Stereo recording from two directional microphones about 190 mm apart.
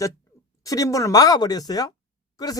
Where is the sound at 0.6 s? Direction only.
20° left (ahead or behind).